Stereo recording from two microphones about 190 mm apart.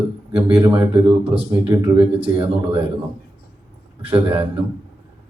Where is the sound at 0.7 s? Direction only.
30° right (ahead or behind).